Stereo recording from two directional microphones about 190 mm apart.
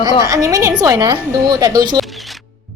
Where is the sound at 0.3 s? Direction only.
15° right (ahead or behind).